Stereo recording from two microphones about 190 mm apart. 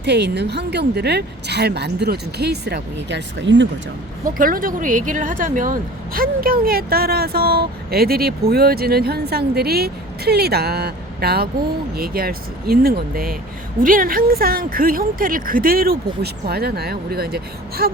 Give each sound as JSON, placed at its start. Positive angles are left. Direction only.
{"t": 0.0, "sound": "speech", "side_deg": -60}
{"t": 4.4, "sound": "a woman's voice", "side_deg": -45}